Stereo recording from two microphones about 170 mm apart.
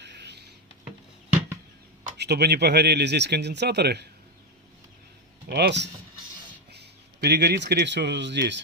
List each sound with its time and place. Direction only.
0.0 s a sound: 85° right
2.1 s speech: 80° right
5.5 s speech: 70° right (ahead or behind); by 8.6 s 90° right